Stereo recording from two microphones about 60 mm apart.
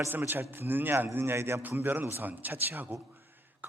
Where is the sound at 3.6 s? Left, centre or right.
Right.